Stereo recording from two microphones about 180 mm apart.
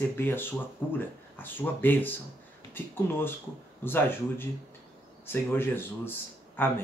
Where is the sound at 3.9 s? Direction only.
10° left (ahead or behind).